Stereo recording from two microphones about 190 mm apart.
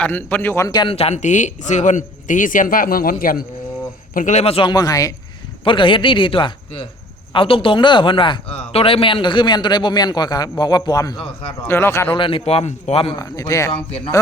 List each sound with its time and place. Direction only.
0.0 s a man's voice: 10° left (ahead or behind)
12.1 s a man's voice: 25° left (ahead or behind)